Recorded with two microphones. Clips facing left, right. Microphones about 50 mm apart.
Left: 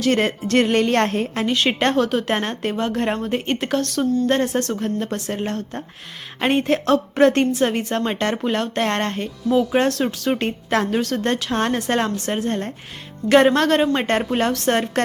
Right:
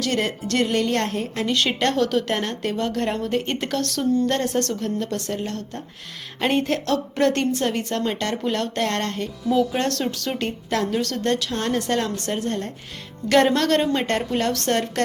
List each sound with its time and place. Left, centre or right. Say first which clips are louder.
0.0 s a woman's voice: left 5 dB; left
3.4 s speech: left 3 dB; centre
4.3 s a woman's voice: left 3 dB; left
4.7 s a woman's voice: left 2 dB; left
6.4 s a woman's voice: left 3 dB; left
13.2 s a woman's voice: left 3 dB; centre
13.9 s a woman's voice: left 3 dB; left